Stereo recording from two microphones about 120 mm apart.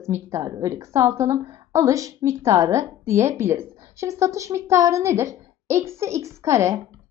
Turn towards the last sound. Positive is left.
turn(degrees=-25)  # may be behind; listen again after turning